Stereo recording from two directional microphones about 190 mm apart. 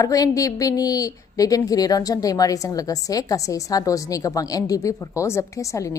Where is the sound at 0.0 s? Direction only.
20° left (ahead or behind).